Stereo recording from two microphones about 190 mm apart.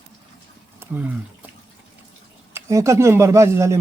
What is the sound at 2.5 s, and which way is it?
Speech, 15° right (ahead or behind).